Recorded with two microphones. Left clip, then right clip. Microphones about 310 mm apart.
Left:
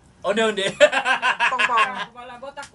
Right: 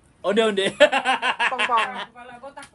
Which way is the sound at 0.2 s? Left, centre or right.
Right.